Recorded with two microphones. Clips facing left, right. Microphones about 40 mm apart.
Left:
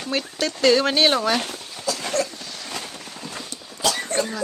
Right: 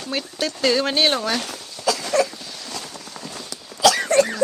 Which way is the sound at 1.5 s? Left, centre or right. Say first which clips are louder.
Left 1 dB; left.